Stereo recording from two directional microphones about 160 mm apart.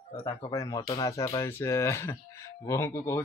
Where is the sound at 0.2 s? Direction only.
20° left (ahead or behind).